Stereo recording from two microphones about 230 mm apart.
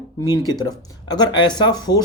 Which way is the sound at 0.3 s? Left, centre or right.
Centre.